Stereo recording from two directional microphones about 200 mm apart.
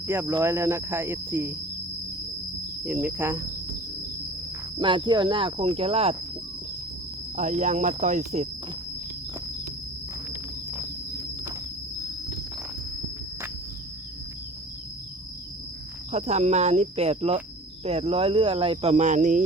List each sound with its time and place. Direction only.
0.0 s cricket: 10° right (ahead or behind)
2.8 s cricket: 10° right (ahead or behind)
4.8 s speech: 25° right (ahead or behind)
7.3 s speech: 40° right (ahead or behind)
10.2 s insect: 10° right (ahead or behind)
16.1 s speech: 35° right (ahead or behind)